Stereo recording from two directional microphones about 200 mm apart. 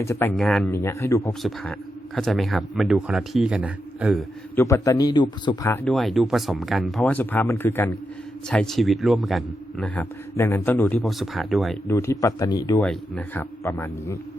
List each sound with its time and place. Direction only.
0.0 s a man's voice: 10° left (ahead or behind)
1.3 s a man's voice: centre (ahead or behind)
4.5 s a man's voice: 15° left (ahead or behind)
5.7 s a man's voice: 5° left (ahead or behind)
11.9 s a man's voice: 10° left (ahead or behind)
12.8 s a man's voice: 5° left (ahead or behind)